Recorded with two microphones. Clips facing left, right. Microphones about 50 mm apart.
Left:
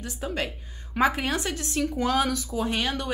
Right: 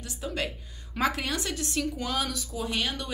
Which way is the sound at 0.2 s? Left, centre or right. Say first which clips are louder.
Left 2 dB; left.